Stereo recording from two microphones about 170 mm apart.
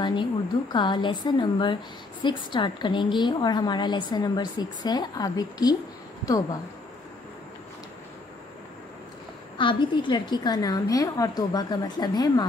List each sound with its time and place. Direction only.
0.0 s a woman's voice: 30° left (ahead or behind)
9.6 s a woman's voice: 30° left (ahead or behind)